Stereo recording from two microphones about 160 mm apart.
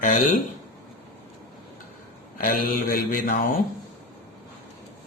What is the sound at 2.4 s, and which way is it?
Mantra, 60° left (ahead or behind).